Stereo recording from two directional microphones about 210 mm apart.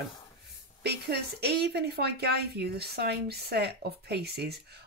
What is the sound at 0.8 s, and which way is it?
A woman's voice, 50° right (ahead or behind).